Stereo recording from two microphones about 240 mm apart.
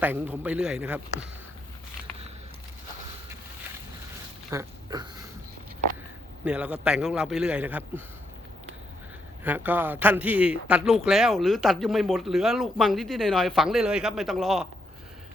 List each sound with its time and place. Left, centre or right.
0.0 s a man's voice: centre
4.5 s speech: centre
6.4 s a man's voice: centre
9.4 s a man's voice: centre